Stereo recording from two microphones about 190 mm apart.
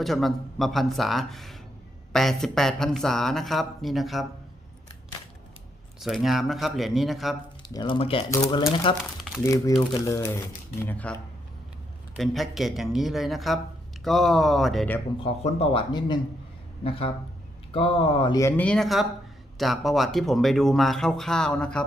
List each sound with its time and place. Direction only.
0.0 s speech: centre (ahead or behind)
6.0 s speech: centre (ahead or behind)
7.7 s speech: 25° left (ahead or behind)
9.4 s speech: 15° left (ahead or behind)
12.1 s speech: centre (ahead or behind)
15.2 s speech: 30° left (ahead or behind); by 21.8 s 5° left (ahead or behind)